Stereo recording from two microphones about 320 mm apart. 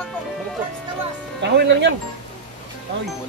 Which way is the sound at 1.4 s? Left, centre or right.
Right.